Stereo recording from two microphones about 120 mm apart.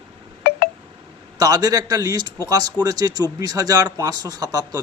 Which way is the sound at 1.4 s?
30° right (ahead or behind).